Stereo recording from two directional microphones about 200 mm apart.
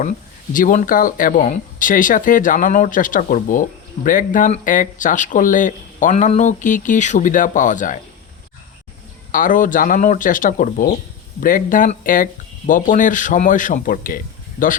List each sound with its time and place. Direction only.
0.5 s speech: 40° left (ahead or behind)
9.3 s speech: 45° left (ahead or behind)